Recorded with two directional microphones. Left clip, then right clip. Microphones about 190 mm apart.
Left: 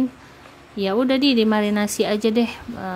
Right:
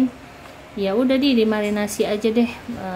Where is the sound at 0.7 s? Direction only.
45° left (ahead or behind).